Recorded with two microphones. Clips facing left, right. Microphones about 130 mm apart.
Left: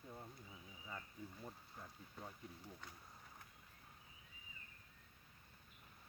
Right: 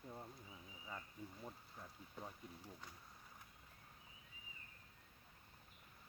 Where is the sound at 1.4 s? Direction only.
5° right (ahead or behind).